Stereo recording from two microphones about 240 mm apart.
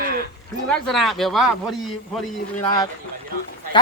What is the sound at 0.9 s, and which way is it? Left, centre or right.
Speech, centre.